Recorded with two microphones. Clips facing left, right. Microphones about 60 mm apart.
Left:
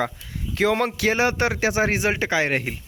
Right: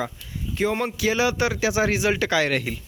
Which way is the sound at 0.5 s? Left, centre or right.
Left.